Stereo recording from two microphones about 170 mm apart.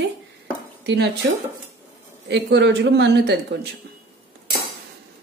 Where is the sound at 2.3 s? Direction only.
90° right.